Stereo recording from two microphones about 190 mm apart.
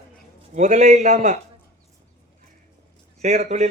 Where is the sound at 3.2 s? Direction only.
40° right (ahead or behind).